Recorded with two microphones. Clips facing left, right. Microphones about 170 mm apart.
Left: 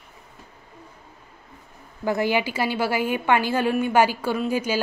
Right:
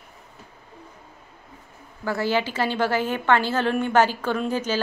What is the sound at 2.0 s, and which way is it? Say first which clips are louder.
A woman's voice: left 1 dB; 15° left (ahead or behind).